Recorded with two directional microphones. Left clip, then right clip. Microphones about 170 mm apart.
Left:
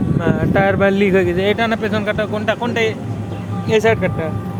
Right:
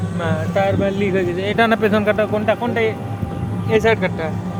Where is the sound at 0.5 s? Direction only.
45° left (ahead or behind); by 1.6 s 30° left (ahead or behind).